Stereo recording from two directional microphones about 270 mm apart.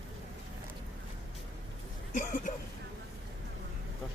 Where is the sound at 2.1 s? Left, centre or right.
Left.